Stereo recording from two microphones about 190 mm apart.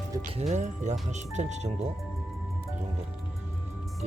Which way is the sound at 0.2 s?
40° right (ahead or behind).